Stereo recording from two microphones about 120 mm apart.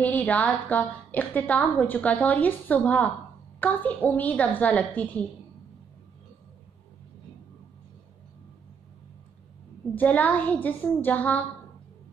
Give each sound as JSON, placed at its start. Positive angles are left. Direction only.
{"t": 0.0, "sound": "a woman's voice", "side_deg": 15}
{"t": 9.9, "sound": "a woman's voice", "side_deg": 15}